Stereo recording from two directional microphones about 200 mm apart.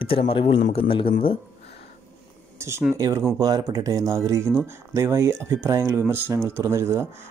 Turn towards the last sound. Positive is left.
turn(degrees=-15)  # may be behind; listen again after turning